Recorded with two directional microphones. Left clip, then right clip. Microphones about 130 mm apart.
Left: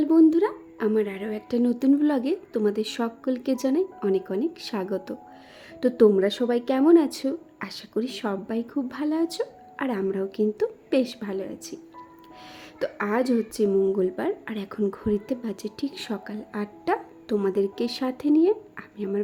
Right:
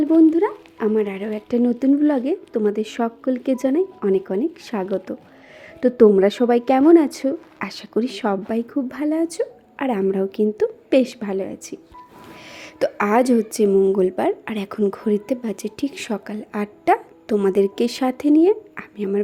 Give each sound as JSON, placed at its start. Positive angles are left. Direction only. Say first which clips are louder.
{"t": 0.0, "sound": "speech", "louder": "right 4 dB", "side_deg": 0}
{"t": 6.1, "sound": "a woman's voice", "louder": "right 7 dB", "side_deg": -15}
{"t": 7.6, "sound": "a woman's voice", "louder": "right 7 dB", "side_deg": -15}
{"t": 9.9, "sound": "a woman's voice", "louder": "right 7 dB", "side_deg": -25}
{"t": 12.8, "sound": "a woman's voice", "louder": "right 8 dB", "side_deg": -15}
{"t": 15.0, "sound": "speech", "louder": "right 6 dB", "side_deg": 0}
{"t": 17.4, "sound": "a woman's voice", "louder": "right 8 dB", "side_deg": -15}